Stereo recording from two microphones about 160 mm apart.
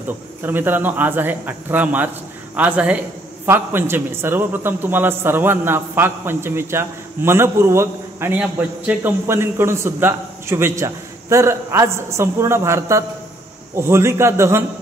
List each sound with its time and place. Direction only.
0.4 s a man's voice: 10° right (ahead or behind)